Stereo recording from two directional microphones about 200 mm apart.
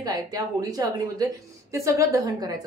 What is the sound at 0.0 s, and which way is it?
A woman's voice, 20° right (ahead or behind).